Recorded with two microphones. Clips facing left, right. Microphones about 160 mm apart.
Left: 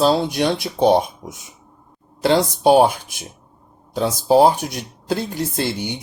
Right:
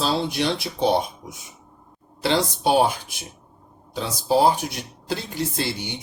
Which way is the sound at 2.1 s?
45° left (ahead or behind).